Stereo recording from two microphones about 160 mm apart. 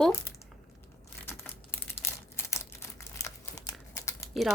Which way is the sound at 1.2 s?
15° left (ahead or behind).